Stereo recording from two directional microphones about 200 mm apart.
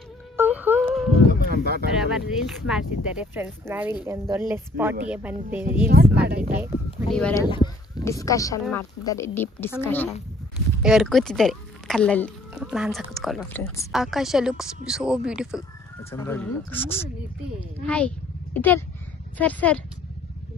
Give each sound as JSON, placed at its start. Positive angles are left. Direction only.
{"t": 0.4, "sound": "a sound", "side_deg": -10}
{"t": 1.5, "sound": "speech", "side_deg": -50}
{"t": 2.0, "sound": "speech", "side_deg": -5}
{"t": 6.1, "sound": "speech", "side_deg": -55}
{"t": 6.5, "sound": "a sound", "side_deg": -10}
{"t": 7.1, "sound": "speech", "side_deg": 5}
{"t": 7.4, "sound": "a woman's voice", "side_deg": 20}
{"t": 10.8, "sound": "speech", "side_deg": 0}
{"t": 12.5, "sound": "speech", "side_deg": -5}
{"t": 13.9, "sound": "speech", "side_deg": 0}
{"t": 16.0, "sound": "a woman's voice", "side_deg": 15}